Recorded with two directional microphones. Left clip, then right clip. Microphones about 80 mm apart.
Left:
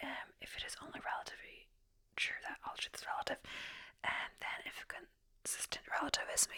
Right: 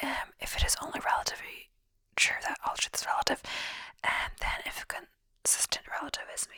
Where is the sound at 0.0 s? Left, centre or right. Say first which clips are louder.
Right 11 dB; right.